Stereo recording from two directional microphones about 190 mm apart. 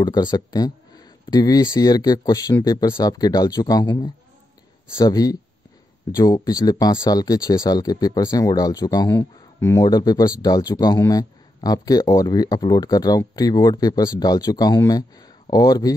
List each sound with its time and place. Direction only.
0.0 s speech: 20° left (ahead or behind)